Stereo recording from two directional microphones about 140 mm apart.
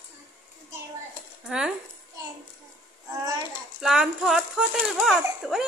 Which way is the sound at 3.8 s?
5° right (ahead or behind).